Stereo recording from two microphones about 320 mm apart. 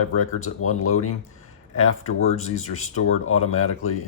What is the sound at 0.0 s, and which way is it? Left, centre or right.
Speech, left.